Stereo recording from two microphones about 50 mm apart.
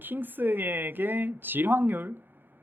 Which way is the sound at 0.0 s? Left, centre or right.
Right.